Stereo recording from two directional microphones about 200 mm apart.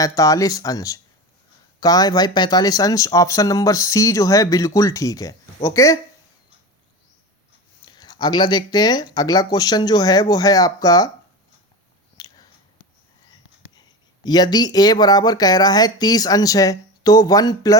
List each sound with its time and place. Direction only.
0.0 s speech: 15° left (ahead or behind)
7.9 s speech: 20° left (ahead or behind)
12.1 s a sound: 20° left (ahead or behind)
14.3 s speech: 20° left (ahead or behind)